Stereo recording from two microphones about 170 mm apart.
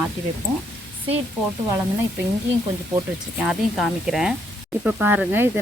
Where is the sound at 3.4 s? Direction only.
Centre (ahead or behind).